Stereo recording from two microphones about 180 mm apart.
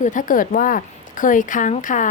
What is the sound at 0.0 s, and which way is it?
Speech, 45° left (ahead or behind).